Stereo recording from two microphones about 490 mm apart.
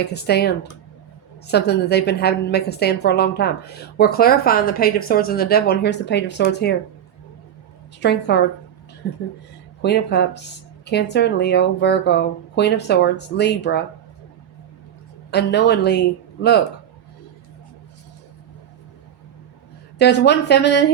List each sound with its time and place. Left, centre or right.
0.1 s speech: centre
8.0 s speech: left
15.3 s speech: centre
20.0 s speech: centre